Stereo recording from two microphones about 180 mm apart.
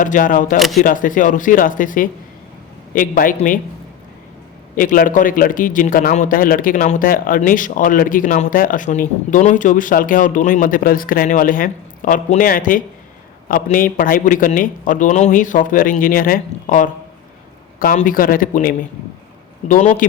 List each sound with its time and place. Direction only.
0.0 s a man's voice: 50° left (ahead or behind)
4.7 s a man's voice: 50° left (ahead or behind)